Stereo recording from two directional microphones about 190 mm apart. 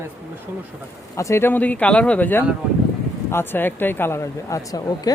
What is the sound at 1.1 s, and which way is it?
Speech, 15° left (ahead or behind).